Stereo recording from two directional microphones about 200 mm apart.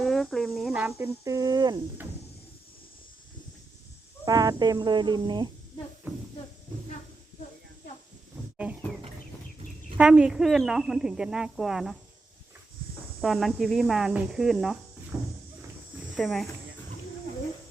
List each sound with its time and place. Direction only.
0.0 s speech: centre (ahead or behind); by 1.8 s 20° right (ahead or behind)
4.3 s speech: 20° right (ahead or behind)
6.0 s speech: 10° right (ahead or behind)
10.0 s speech: 5° right (ahead or behind)
13.2 s speech: centre (ahead or behind)
15.1 s a sound: 5° right (ahead or behind)
16.1 s speech: centre (ahead or behind)